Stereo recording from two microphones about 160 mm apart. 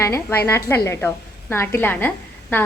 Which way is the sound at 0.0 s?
15° left (ahead or behind).